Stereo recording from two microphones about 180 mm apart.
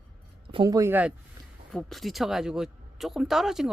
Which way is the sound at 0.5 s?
20° right (ahead or behind).